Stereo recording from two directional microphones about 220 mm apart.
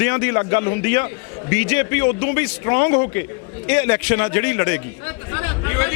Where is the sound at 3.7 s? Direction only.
15° left (ahead or behind).